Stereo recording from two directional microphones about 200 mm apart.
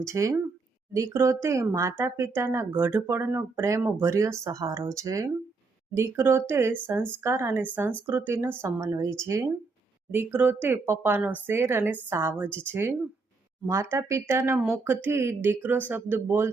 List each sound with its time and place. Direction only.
0.0 s speech: 15° right (ahead or behind)
13.7 s speech: 15° right (ahead or behind)